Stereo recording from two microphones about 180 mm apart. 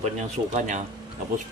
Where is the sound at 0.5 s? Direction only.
45° right (ahead or behind).